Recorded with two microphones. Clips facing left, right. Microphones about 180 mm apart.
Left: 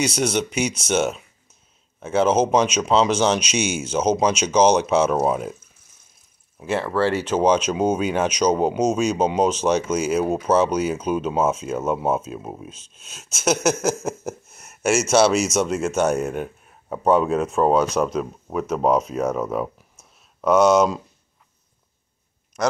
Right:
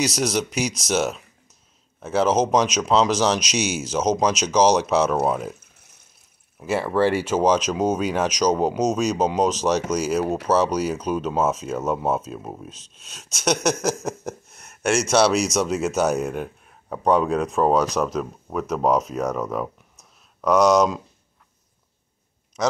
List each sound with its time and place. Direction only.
0.0 s speech: centre (ahead or behind)
6.6 s speech: 10° right (ahead or behind)
12.9 s a sound: 5° left (ahead or behind)